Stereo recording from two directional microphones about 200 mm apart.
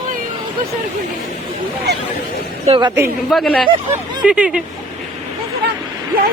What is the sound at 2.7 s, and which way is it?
Speech, 20° right (ahead or behind).